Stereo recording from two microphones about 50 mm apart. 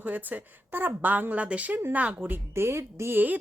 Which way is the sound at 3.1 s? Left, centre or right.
Right.